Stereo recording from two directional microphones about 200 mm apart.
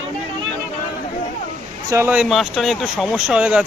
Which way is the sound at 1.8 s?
15° right (ahead or behind).